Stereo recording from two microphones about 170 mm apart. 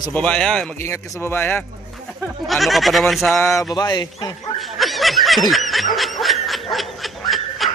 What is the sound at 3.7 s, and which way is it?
Speech, 25° left (ahead or behind).